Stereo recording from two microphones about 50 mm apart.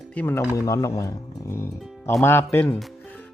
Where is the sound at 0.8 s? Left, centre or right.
Left.